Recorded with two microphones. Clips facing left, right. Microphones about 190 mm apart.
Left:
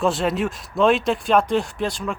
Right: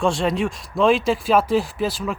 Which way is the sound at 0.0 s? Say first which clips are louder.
Even; centre (ahead or behind).